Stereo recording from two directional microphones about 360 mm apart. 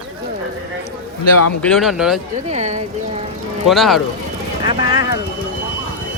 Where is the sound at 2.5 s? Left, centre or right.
Centre.